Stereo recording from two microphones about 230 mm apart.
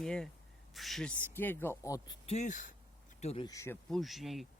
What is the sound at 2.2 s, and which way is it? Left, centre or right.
Speech, left.